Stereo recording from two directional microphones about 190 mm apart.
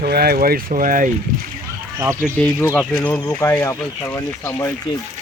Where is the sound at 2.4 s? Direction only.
10° left (ahead or behind).